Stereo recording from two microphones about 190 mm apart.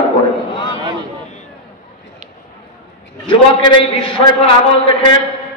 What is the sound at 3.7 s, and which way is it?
A man's voice, 25° left (ahead or behind).